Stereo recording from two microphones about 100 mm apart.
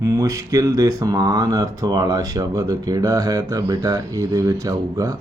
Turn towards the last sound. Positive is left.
turn(degrees=-35)  # may be behind; listen again after turning